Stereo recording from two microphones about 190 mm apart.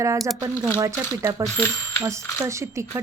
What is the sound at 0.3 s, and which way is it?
A woman's voice, 15° right (ahead or behind).